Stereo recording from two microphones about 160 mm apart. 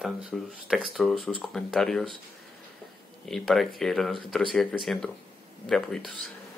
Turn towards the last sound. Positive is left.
turn(degrees=5)  # may be behind; listen again after turning